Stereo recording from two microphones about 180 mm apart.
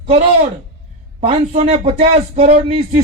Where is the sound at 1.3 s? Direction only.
40° right (ahead or behind).